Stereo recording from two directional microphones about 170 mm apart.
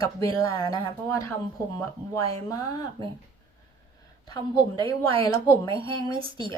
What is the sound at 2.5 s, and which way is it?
Speech, 20° left (ahead or behind).